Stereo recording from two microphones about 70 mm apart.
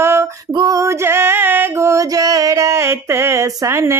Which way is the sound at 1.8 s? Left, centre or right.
Right.